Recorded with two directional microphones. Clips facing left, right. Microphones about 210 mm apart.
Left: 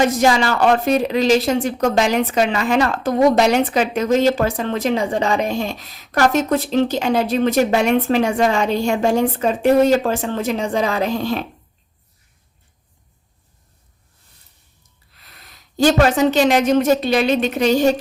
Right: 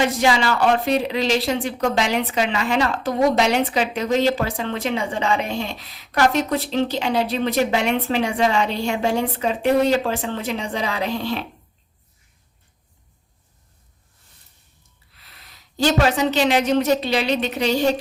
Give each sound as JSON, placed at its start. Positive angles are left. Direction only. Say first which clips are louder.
{"t": 0.0, "sound": "speech", "louder": "left 3 dB", "side_deg": 45}
{"t": 15.4, "sound": "speech", "louder": "left 5 dB", "side_deg": 45}